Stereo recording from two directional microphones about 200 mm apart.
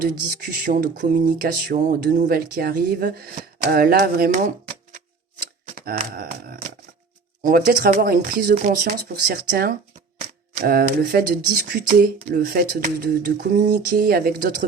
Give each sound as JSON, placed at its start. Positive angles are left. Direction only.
{"t": 0.6, "sound": "speech", "side_deg": -45}